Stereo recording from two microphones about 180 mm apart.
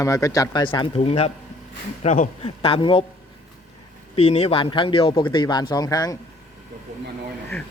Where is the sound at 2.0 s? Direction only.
40° left (ahead or behind).